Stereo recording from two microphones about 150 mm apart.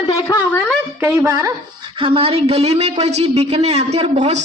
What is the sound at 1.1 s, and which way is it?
A woman's voice, 25° right (ahead or behind).